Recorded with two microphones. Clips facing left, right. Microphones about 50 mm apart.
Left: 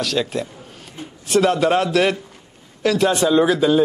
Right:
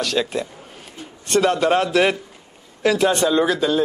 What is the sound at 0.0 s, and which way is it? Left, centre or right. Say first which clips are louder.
A man's voice: even; centre.